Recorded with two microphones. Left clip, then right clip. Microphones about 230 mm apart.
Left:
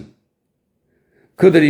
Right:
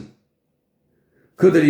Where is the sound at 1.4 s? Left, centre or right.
Left.